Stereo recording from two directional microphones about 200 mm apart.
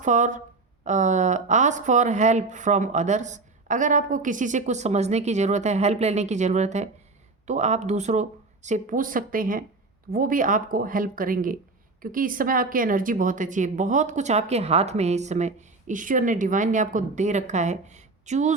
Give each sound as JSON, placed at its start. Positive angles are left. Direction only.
{"t": 0.0, "sound": "speech", "side_deg": -40}